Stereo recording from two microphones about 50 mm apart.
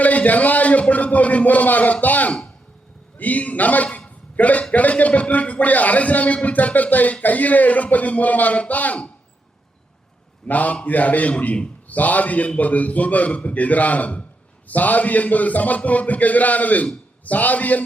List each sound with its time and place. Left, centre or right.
0.0 s a man's voice: left
3.9 s a sound: left
4.7 s a man's voice: left
10.4 s a man's voice: left